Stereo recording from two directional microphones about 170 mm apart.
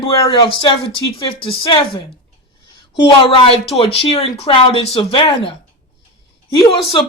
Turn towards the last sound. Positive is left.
turn(degrees=30)  # may be behind; listen again after turning